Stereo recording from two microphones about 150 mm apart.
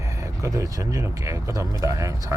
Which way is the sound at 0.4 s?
20° right (ahead or behind).